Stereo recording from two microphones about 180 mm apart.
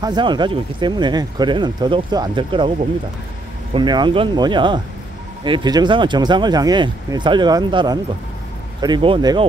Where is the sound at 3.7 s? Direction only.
25° right (ahead or behind).